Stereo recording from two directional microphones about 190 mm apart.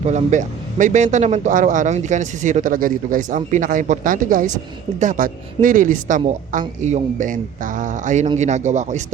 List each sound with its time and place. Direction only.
0.0 s a man's voice: 35° right (ahead or behind)